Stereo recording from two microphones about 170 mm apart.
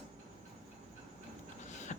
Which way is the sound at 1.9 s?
40° left (ahead or behind).